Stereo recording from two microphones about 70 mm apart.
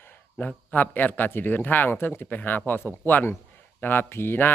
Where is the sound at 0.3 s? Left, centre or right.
Left.